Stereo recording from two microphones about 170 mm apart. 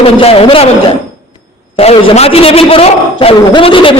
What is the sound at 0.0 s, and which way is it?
A man's voice, 35° left (ahead or behind).